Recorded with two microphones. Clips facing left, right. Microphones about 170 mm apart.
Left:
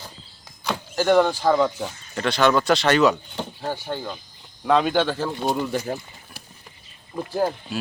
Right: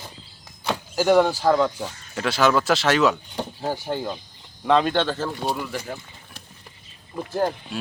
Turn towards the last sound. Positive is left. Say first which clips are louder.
# even
turn(degrees=5)  # may be behind; listen again after turning